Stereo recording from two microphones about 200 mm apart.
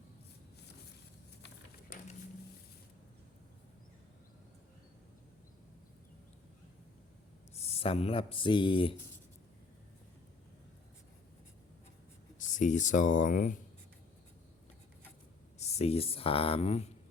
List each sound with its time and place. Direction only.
1.9 s a sound: 45° left (ahead or behind)
7.5 s speech: 30° left (ahead or behind)
12.5 s speech: 40° left (ahead or behind)
15.5 s speech: 30° left (ahead or behind)